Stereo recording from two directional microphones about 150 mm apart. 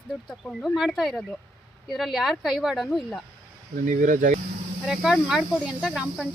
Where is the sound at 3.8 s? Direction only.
60° right (ahead or behind).